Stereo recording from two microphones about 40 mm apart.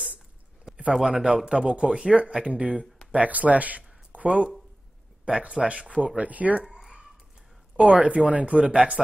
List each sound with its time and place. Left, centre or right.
1.0 s speech: right
3.1 s speech: right
6.6 s a sound: centre
7.7 s speech: right